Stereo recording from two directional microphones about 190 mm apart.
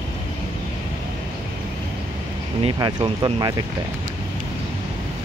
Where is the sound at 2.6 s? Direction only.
25° right (ahead or behind).